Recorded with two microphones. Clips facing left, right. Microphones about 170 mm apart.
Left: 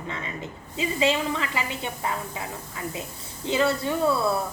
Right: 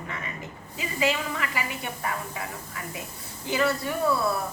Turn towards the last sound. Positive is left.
turn(degrees=25)  # may be behind; listen again after turning